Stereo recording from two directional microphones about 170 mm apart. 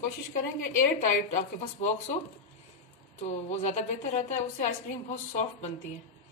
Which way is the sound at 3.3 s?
40° left (ahead or behind).